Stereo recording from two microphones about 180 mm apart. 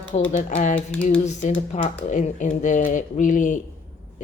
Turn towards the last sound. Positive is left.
turn(degrees=45)  # may be behind; listen again after turning